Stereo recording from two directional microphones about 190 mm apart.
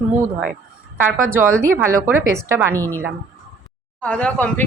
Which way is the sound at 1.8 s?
15° right (ahead or behind).